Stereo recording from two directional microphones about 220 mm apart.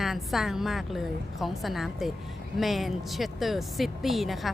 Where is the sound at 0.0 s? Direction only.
Centre (ahead or behind).